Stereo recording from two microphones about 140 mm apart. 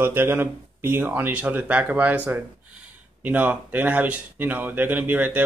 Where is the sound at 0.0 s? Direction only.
15° right (ahead or behind).